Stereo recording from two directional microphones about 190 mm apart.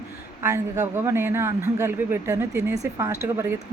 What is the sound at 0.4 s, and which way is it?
Speech, 15° right (ahead or behind).